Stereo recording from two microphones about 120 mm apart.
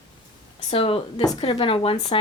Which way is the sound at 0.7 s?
50° left (ahead or behind).